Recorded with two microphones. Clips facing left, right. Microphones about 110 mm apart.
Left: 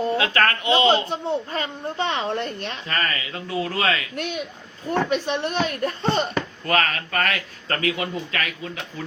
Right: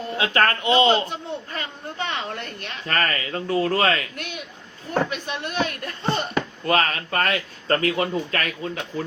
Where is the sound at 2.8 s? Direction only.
45° right (ahead or behind).